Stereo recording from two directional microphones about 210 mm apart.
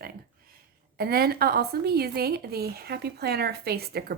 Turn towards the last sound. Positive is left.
turn(degrees=-50)  # may be behind; listen again after turning